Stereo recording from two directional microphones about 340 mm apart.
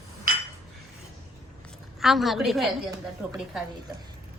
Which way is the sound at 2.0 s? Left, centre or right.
Centre.